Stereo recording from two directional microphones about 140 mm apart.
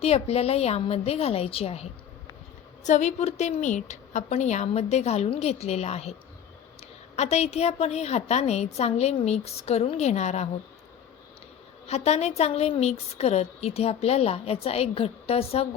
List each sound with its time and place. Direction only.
0.0 s a woman's voice: 45° left (ahead or behind)
2.8 s a woman's voice: 55° left (ahead or behind)
11.9 s a woman's voice: 50° left (ahead or behind)